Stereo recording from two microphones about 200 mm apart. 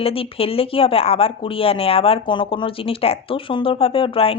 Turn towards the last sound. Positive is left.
turn(degrees=25)  # may be behind; listen again after turning